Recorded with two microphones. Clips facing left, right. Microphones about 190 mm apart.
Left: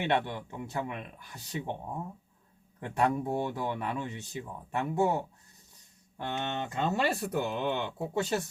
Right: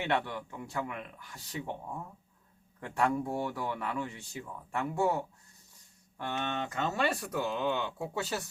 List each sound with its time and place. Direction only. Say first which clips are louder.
0.0 s speech: left 2 dB; 25° left (ahead or behind)